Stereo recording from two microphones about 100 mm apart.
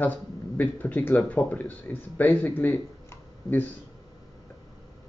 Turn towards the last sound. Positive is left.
turn(degrees=20)  # may be behind; listen again after turning